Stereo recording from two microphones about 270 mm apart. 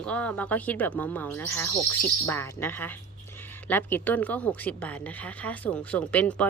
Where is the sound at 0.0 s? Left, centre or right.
Centre.